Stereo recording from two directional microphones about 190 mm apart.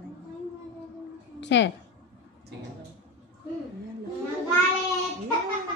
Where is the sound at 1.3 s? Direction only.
65° left (ahead or behind).